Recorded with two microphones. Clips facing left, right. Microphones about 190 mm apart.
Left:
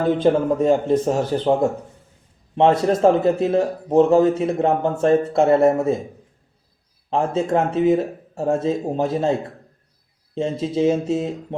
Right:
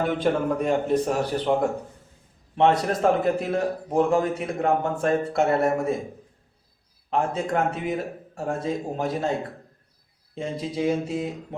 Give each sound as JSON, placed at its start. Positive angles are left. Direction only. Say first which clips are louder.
{"t": 0.1, "sound": "a man's voice", "louder": "left 6 dB", "side_deg": 25}
{"t": 2.6, "sound": "a man's voice", "louder": "left 5 dB", "side_deg": 30}
{"t": 7.1, "sound": "a man's voice", "louder": "left 5 dB", "side_deg": 25}
{"t": 10.3, "sound": "a man's voice", "louder": "left 7 dB", "side_deg": 25}